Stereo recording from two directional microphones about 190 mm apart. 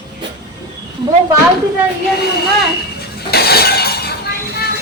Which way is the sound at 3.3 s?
55° left (ahead or behind).